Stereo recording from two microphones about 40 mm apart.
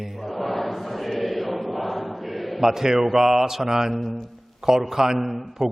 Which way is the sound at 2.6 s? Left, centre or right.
Centre.